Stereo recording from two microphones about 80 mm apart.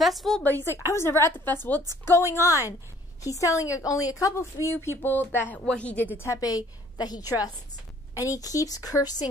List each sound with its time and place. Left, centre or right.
0.0 s a woman's voice: centre
0.4 s a woman's voice: left
0.8 s a woman's voice: left
2.3 s a woman's voice: left
6.2 s a woman's voice: left